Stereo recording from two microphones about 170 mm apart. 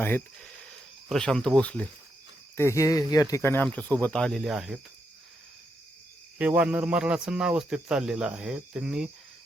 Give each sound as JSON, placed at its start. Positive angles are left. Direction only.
{"t": 0.0, "sound": "speech", "side_deg": 10}
{"t": 6.4, "sound": "speech", "side_deg": -10}